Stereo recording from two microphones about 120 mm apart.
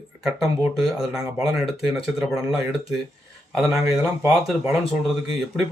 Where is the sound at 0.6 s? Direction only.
5° right (ahead or behind).